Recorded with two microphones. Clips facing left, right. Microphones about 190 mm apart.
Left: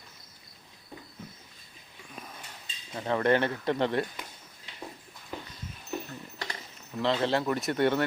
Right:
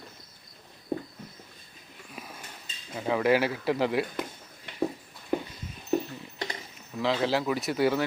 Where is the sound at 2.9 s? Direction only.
5° right (ahead or behind).